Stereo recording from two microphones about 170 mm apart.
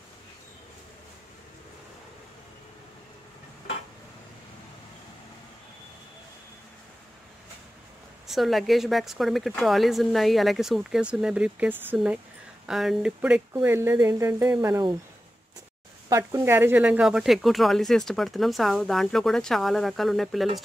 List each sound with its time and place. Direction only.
8.3 s speech: centre (ahead or behind)
16.1 s speech: 20° right (ahead or behind); by 20.4 s centre (ahead or behind)